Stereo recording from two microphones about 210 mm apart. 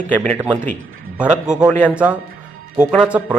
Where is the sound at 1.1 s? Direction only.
5° right (ahead or behind).